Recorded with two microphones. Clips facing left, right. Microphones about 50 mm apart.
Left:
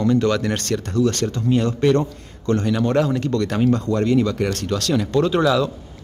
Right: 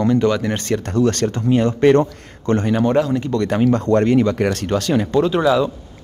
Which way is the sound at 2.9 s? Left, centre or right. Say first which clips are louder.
Right 1 dB; centre.